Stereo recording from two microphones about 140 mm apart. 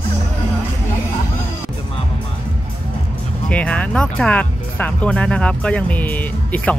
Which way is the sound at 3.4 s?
10° left (ahead or behind).